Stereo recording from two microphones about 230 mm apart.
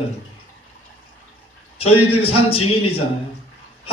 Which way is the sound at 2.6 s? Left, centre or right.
Left.